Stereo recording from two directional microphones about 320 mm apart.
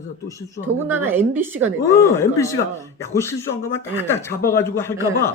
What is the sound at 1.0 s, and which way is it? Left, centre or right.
Speech, centre.